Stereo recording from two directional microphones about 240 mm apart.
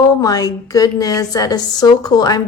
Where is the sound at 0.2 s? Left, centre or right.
Centre.